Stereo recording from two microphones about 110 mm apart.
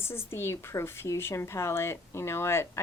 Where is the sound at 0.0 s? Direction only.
20° left (ahead or behind).